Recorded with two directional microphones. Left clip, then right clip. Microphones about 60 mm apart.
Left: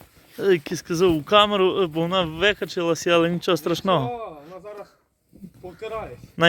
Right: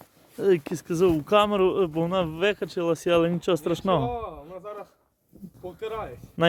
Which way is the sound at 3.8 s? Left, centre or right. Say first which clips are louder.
Left 2 dB; left.